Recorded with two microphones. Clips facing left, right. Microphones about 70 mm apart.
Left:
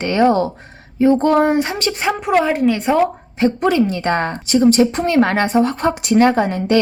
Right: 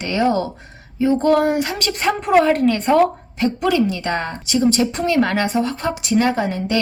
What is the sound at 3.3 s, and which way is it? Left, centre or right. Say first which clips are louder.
A woman's voice: left 3 dB; left.